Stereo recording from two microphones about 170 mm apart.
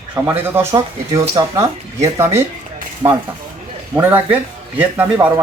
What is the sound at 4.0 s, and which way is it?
A man's voice, 10° right (ahead or behind).